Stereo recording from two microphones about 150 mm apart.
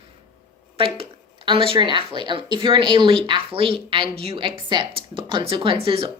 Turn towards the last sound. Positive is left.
turn(degrees=-40)  # may be behind; listen again after turning